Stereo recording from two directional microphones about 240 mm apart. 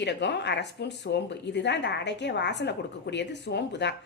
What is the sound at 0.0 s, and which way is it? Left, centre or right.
Speech, left.